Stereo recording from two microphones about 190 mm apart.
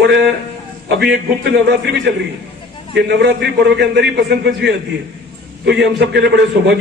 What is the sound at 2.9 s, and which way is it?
A man's voice, 60° right (ahead or behind).